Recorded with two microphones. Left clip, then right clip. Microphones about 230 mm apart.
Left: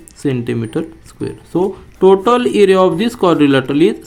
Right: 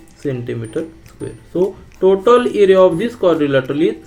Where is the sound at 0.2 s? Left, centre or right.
Left.